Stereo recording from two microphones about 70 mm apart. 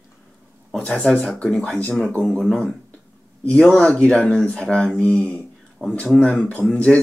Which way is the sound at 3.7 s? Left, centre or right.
Centre.